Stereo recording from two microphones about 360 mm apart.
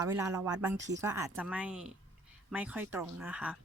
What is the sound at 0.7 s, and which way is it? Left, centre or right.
Speech, right.